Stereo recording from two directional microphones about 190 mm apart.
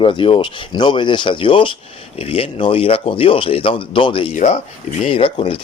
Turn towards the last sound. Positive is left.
turn(degrees=30)  # may be behind; listen again after turning